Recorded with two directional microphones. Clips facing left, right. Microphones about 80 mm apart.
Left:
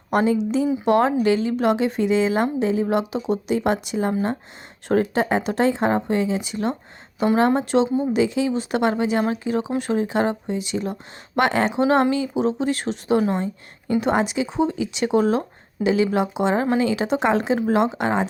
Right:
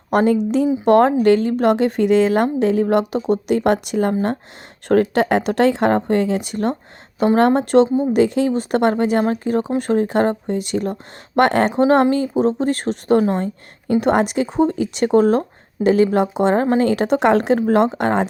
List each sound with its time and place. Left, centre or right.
0.1 s a woman's voice: right
11.8 s a woman's voice: right